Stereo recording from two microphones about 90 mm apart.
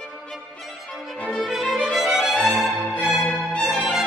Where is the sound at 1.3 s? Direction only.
Centre (ahead or behind).